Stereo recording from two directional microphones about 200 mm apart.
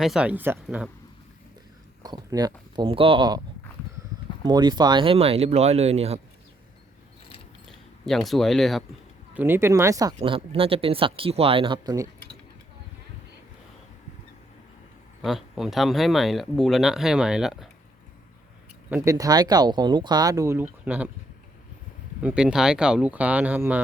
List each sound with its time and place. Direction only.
0.0 s speech: 5° right (ahead or behind)
2.0 s speech: 20° right (ahead or behind)
4.4 s speech: 20° right (ahead or behind)
8.0 s speech: centre (ahead or behind)
9.3 s speech: 10° right (ahead or behind)
15.2 s speech: centre (ahead or behind)
18.9 s speech: 15° right (ahead or behind)
22.2 s speech: 5° right (ahead or behind)